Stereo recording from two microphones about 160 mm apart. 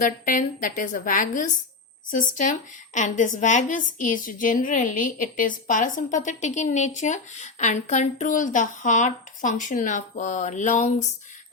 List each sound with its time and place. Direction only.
0.0 s a woman's voice: 55° left (ahead or behind)